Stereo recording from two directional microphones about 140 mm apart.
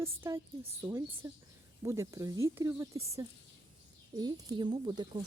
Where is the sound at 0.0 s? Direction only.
20° right (ahead or behind).